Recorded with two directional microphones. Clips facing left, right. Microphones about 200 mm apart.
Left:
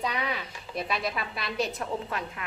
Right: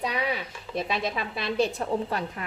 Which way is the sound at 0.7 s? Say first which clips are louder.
Right 2 dB; 25° right (ahead or behind).